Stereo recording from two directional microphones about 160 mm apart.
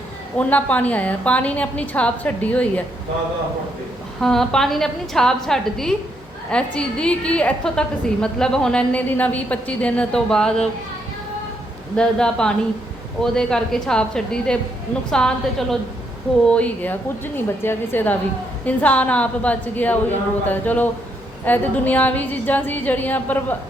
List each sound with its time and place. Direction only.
0.3 s a woman's voice: 10° left (ahead or behind)
4.2 s a woman's voice: 5° left (ahead or behind)
11.9 s a woman's voice: 5° left (ahead or behind)